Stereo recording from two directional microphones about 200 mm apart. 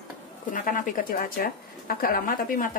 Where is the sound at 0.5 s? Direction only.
40° left (ahead or behind).